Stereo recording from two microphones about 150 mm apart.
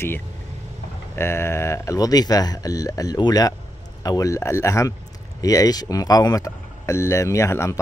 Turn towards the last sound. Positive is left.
turn(degrees=20)  # may be behind; listen again after turning